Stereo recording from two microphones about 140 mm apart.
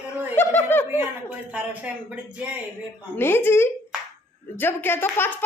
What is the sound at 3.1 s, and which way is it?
A woman's voice, 15° left (ahead or behind).